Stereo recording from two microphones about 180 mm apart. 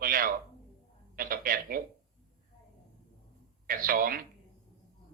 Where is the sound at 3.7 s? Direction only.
50° right (ahead or behind).